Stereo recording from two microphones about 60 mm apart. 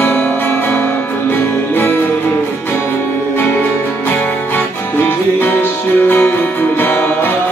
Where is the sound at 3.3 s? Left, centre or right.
Left.